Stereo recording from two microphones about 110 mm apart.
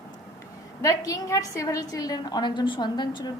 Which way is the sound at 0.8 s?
35° left (ahead or behind).